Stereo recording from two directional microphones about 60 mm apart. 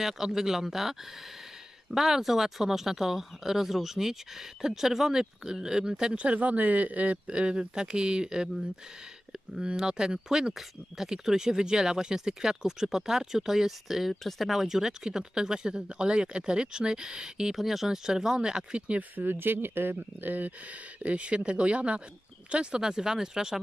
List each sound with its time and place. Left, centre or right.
0.0 s speech: centre
9.6 s speech: centre